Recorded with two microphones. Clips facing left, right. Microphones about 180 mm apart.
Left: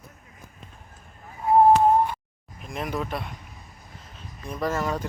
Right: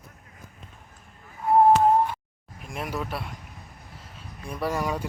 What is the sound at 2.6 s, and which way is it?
Speech, 5° right (ahead or behind).